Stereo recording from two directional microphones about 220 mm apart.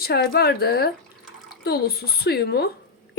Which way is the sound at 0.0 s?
45° left (ahead or behind).